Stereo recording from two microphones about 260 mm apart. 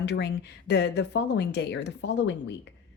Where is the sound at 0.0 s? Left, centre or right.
Left.